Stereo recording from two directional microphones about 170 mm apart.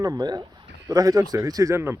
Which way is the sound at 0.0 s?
20° right (ahead or behind).